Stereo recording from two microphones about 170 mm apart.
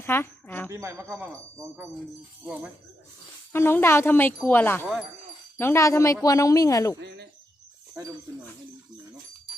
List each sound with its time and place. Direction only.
0.0 s a woman's voice: 15° left (ahead or behind)
0.7 s speech: 15° right (ahead or behind)
3.5 s speech: 15° left (ahead or behind)
7.0 s speech: 80° right